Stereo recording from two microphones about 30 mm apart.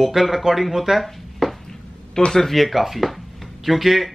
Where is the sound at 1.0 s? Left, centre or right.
Centre.